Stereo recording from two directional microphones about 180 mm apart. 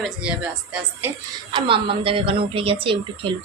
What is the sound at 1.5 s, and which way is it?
A woman's voice, 30° right (ahead or behind).